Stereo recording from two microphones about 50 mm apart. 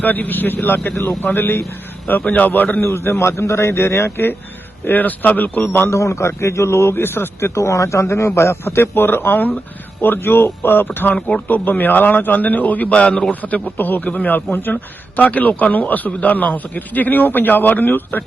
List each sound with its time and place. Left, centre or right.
0.0 s a man's voice: left
2.2 s a man's voice: left
2.8 s speech: left
4.9 s a man's voice: left
5.9 s a man's voice: left
6.9 s a man's voice: left